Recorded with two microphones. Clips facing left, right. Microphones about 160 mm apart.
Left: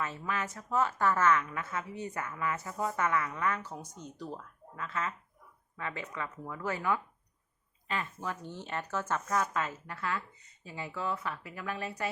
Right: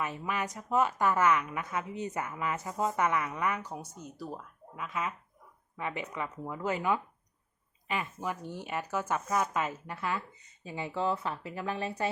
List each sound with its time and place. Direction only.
0.0 s a woman's voice: 15° right (ahead or behind)